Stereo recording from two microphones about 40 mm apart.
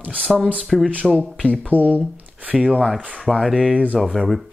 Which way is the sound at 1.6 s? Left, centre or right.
Right.